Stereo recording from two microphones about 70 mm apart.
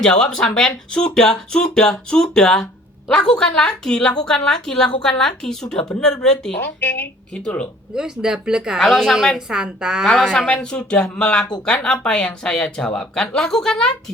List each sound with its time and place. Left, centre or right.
0.0 s speech: centre
6.6 s speech: left
7.9 s a woman's voice: centre
8.8 s a woman's voice: centre
9.1 s a woman's voice: centre
10.1 s speech: centre